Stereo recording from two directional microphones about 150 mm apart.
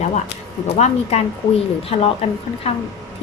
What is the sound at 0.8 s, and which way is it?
A woman's voice, 40° left (ahead or behind).